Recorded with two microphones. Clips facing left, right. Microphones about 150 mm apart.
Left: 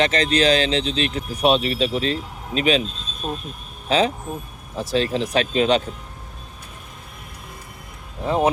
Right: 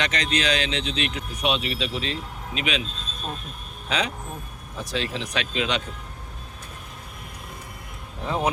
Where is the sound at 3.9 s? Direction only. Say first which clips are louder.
Left 8 dB; 30° left (ahead or behind).